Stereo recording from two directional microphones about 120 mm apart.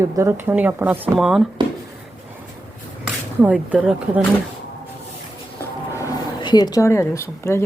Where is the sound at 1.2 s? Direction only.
5° right (ahead or behind).